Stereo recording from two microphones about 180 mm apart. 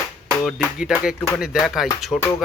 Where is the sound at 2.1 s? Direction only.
15° left (ahead or behind).